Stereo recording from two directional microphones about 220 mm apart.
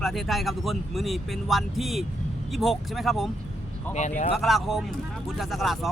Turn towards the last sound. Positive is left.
turn(degrees=0)  # may be behind; listen again after turning